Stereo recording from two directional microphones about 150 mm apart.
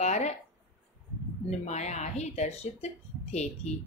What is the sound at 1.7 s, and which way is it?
Speech, 50° left (ahead or behind).